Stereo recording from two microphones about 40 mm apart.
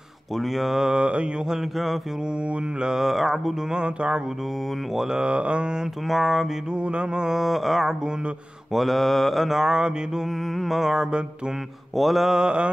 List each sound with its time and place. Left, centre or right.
0.4 s mantra: centre
0.8 s mantra: right
2.8 s mantra: centre
3.7 s mantra: right
6.0 s mantra: centre
6.7 s mantra: right
7.2 s mantra: centre
10.6 s mantra: centre
12.3 s mantra: right